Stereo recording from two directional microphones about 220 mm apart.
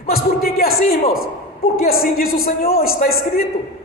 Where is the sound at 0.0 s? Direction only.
40° left (ahead or behind).